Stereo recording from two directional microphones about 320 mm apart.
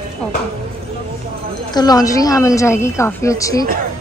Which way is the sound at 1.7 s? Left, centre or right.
Centre.